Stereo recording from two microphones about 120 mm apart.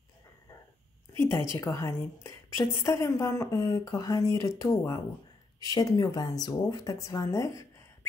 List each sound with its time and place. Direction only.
1.5 s a woman's voice: 25° left (ahead or behind)